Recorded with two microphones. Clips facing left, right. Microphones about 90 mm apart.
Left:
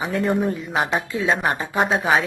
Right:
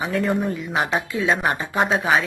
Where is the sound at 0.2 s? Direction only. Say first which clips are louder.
Left 1 dB; centre (ahead or behind).